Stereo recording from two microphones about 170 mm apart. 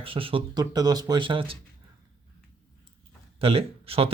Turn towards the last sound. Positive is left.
turn(degrees=-35)  # may be behind; listen again after turning